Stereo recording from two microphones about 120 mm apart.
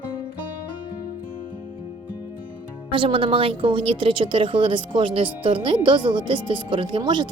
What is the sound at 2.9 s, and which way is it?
A woman's voice, 50° right (ahead or behind).